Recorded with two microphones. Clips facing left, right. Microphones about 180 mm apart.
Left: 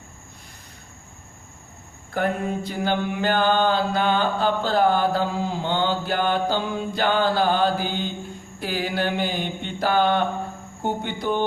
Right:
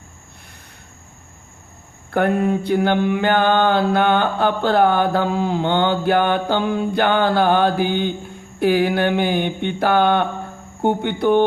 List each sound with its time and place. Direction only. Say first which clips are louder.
2.1 s mantra: right 7 dB; 65° right (ahead or behind)